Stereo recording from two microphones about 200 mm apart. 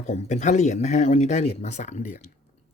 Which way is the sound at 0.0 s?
35° left (ahead or behind).